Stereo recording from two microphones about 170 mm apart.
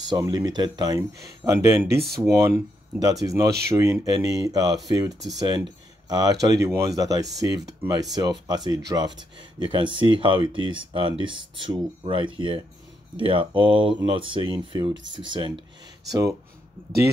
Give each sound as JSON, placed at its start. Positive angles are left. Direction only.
{"t": 0.1, "sound": "speech", "side_deg": -20}